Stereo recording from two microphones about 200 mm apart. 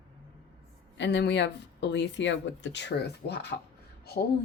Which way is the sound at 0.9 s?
65° left (ahead or behind).